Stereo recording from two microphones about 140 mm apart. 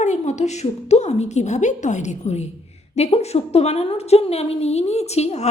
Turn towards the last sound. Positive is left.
turn(degrees=50)  # may be behind; listen again after turning